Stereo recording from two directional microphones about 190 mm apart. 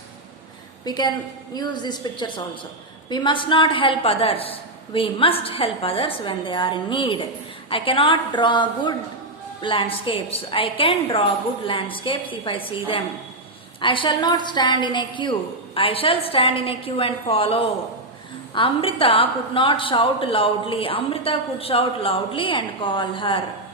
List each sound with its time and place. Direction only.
0.9 s a woman's voice: 20° left (ahead or behind)